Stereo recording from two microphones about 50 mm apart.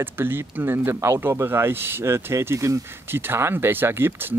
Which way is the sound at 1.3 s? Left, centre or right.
Right.